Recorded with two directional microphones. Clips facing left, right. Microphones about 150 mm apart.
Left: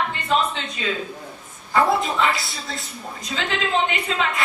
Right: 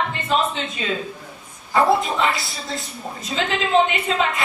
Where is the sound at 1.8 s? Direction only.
Centre (ahead or behind).